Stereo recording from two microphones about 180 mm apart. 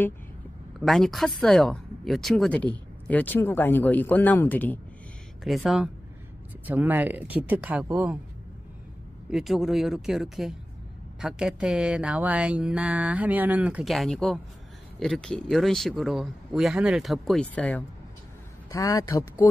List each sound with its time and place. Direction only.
0.7 s speech: centre (ahead or behind)
9.3 s speech: centre (ahead or behind)
18.7 s speech: 15° left (ahead or behind)